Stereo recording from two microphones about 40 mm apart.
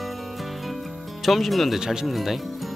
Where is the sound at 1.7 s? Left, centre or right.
Centre.